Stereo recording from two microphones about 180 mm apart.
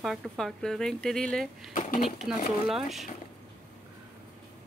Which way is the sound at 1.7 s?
45° left (ahead or behind).